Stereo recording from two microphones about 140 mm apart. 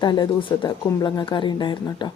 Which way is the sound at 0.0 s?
35° left (ahead or behind).